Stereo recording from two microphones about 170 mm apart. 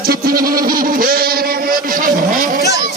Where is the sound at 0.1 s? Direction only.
60° right (ahead or behind).